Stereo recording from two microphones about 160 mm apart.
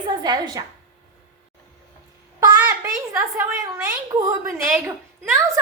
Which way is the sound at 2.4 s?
20° right (ahead or behind).